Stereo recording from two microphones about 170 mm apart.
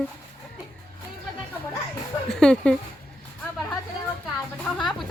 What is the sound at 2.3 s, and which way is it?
Speech, 5° left (ahead or behind).